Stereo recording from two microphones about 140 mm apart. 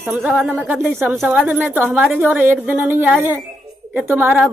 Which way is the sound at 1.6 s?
15° right (ahead or behind).